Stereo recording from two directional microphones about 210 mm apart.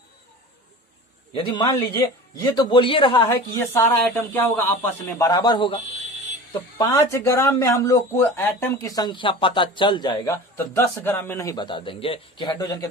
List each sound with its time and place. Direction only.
1.3 s a man's voice: 25° left (ahead or behind)
3.3 s speech: 15° left (ahead or behind)